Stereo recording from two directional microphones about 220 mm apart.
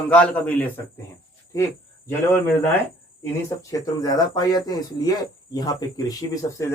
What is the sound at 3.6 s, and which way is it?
Speech, 15° left (ahead or behind).